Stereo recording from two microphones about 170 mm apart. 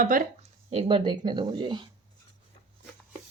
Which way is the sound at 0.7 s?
30° right (ahead or behind).